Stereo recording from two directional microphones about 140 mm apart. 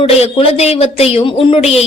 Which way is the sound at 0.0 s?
45° left (ahead or behind).